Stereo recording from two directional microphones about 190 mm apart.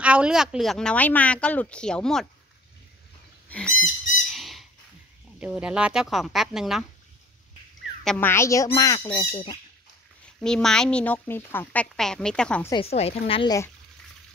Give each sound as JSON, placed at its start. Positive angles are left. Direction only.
{"t": 0.0, "sound": "speech", "side_deg": -5}
{"t": 3.4, "sound": "a sound", "side_deg": 5}
{"t": 3.8, "sound": "squawk", "side_deg": 0}
{"t": 5.4, "sound": "speech", "side_deg": -5}
{"t": 8.0, "sound": "speech", "side_deg": 5}
{"t": 10.4, "sound": "speech", "side_deg": 5}
{"t": 12.7, "sound": "speech", "side_deg": 30}